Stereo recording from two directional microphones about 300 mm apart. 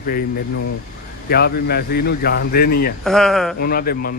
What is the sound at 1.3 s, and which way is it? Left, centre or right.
A man's voice, left.